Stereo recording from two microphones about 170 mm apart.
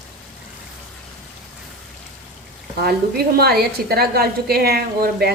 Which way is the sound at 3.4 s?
65° right (ahead or behind).